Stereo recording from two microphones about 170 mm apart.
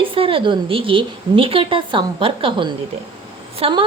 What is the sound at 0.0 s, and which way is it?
A woman's voice, 30° right (ahead or behind).